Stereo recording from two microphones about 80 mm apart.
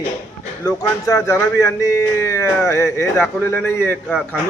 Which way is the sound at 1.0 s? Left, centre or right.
Left.